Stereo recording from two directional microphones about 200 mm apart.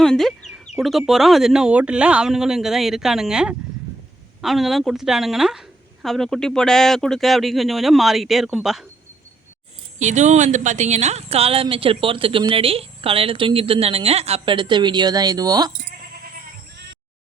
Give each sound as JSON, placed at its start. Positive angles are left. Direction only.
{"t": 0.0, "sound": "bird", "side_deg": 0}
{"t": 0.8, "sound": "a woman's voice", "side_deg": 0}
{"t": 10.0, "sound": "speech", "side_deg": -35}